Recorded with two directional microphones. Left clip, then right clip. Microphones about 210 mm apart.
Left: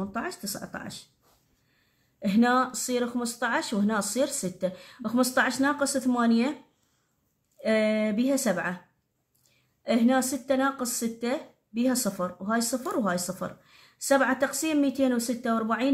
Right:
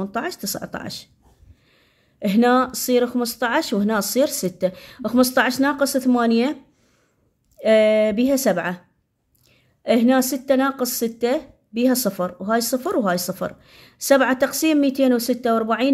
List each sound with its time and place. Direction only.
0.0 s speech: 40° right (ahead or behind)
2.1 s speech: 35° right (ahead or behind)
7.6 s speech: 35° right (ahead or behind)
9.8 s speech: 35° right (ahead or behind)